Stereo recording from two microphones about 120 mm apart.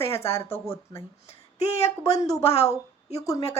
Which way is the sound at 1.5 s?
60° left (ahead or behind).